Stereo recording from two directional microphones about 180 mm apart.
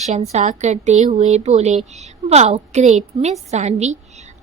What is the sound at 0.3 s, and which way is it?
A woman's voice, 40° right (ahead or behind).